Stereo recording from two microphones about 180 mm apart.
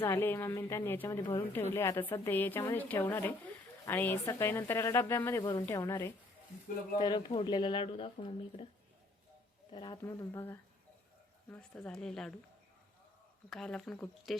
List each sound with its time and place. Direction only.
0.0 s a woman's voice: 10° left (ahead or behind)
1.2 s speech: 25° left (ahead or behind)
1.7 s a woman's voice: 15° left (ahead or behind)
5.4 s a woman's voice: 25° left (ahead or behind)
9.7 s a woman's voice: 25° left (ahead or behind); by 12.3 s 5° left (ahead or behind)
13.5 s speech: 5° left (ahead or behind)